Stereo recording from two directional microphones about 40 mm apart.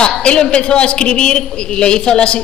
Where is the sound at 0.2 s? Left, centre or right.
Left.